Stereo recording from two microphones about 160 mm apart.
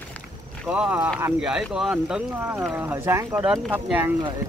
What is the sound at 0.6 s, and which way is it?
Speech, 5° right (ahead or behind).